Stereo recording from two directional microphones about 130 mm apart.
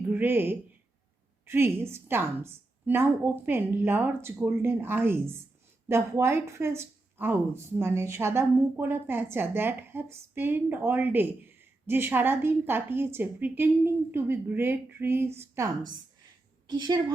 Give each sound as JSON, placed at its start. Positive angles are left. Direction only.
{"t": 0.1, "sound": "a woman's voice", "side_deg": -15}